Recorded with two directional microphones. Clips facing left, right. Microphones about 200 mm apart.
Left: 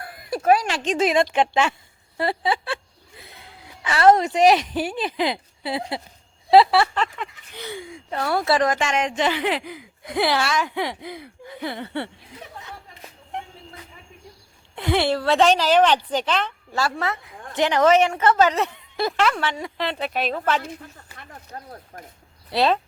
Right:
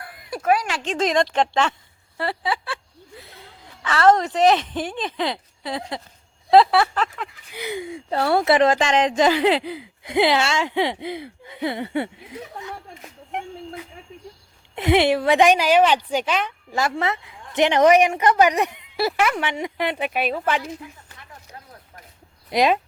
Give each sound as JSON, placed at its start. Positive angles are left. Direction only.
{"t": 0.0, "sound": "a sound", "side_deg": 35}
{"t": 0.9, "sound": "speech", "side_deg": 10}
{"t": 2.1, "sound": "speech", "side_deg": 20}
{"t": 3.8, "sound": "speech", "side_deg": 10}
{"t": 6.5, "sound": "a sound", "side_deg": 0}
{"t": 7.6, "sound": "a woman's voice", "side_deg": -15}
{"t": 8.1, "sound": "speech", "side_deg": -30}
{"t": 14.8, "sound": "a woman's voice", "side_deg": -20}
{"t": 20.6, "sound": "speech", "side_deg": 55}
{"t": 22.4, "sound": "a woman's voice", "side_deg": -15}